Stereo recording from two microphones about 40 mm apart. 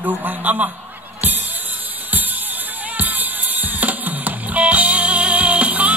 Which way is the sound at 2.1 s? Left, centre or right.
Right.